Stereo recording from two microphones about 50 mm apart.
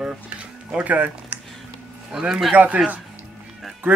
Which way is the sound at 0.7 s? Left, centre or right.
Right.